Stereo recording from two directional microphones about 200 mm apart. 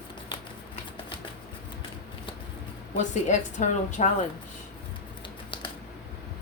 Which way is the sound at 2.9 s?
35° left (ahead or behind).